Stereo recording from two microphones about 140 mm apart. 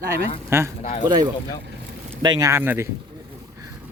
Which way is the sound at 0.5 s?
20° right (ahead or behind).